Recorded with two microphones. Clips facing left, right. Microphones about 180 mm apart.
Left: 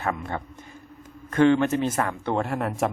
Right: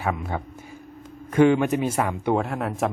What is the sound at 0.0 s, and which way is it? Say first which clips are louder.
Speech: right 1 dB; 5° right (ahead or behind).